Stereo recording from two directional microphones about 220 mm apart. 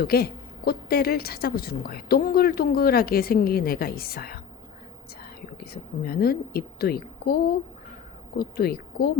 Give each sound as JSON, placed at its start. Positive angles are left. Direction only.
{"t": 0.0, "sound": "a woman's voice", "side_deg": 45}
{"t": 5.7, "sound": "a woman's voice", "side_deg": 45}